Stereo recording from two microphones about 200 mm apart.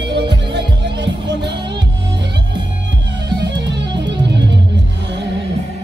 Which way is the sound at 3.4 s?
60° right (ahead or behind).